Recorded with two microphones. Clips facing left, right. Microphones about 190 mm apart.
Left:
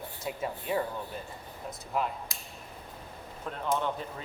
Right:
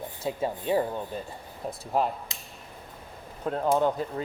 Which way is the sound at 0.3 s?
30° right (ahead or behind).